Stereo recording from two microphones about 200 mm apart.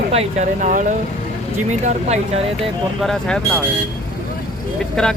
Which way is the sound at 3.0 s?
5° left (ahead or behind).